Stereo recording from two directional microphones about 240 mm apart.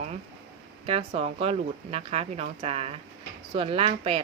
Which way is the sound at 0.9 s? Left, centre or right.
Right.